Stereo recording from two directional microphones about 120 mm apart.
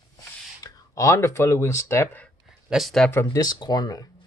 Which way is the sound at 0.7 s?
25° left (ahead or behind).